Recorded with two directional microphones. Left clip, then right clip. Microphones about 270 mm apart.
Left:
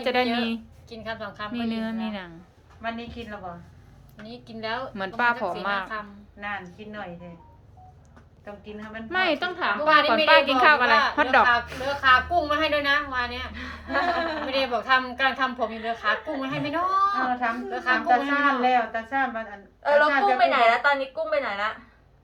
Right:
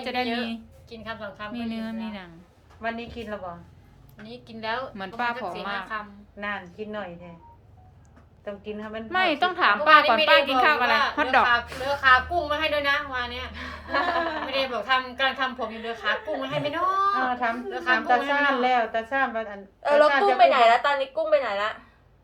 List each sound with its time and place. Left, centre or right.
0.0 s a woman's voice: centre
2.8 s speech: right
4.3 s a woman's voice: centre
6.4 s speech: right
8.4 s speech: right
9.0 s a woman's voice: centre
13.6 s a woman's voice: right
14.5 s a woman's voice: centre
18.3 s a woman's voice: right